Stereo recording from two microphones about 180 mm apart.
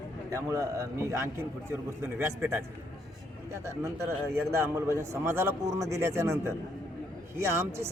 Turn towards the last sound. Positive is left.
turn(degrees=-15)  # may be behind; listen again after turning